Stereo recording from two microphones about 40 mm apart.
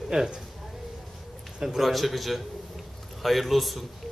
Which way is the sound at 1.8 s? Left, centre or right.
Centre.